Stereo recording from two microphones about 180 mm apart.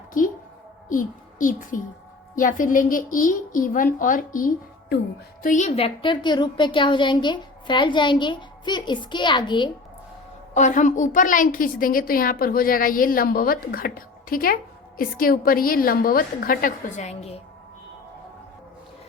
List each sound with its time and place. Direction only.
0.9 s a child's voice: 50° left (ahead or behind); by 9.6 s 25° left (ahead or behind)
10.5 s a woman's voice: 45° left (ahead or behind)